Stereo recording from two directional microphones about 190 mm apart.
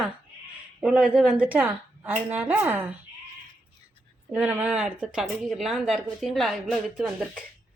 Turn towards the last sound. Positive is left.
turn(degrees=0)  # may be behind; listen again after turning